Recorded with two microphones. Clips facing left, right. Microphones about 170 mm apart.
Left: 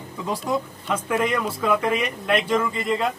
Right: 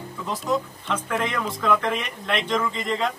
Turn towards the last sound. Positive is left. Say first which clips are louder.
# left 2 dB
turn(degrees=5)  # may be behind; listen again after turning